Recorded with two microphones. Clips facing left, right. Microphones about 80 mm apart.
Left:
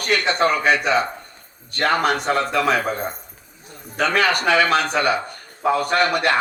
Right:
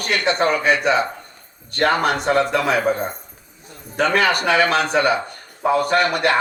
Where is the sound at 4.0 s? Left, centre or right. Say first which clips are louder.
Right 1 dB; right.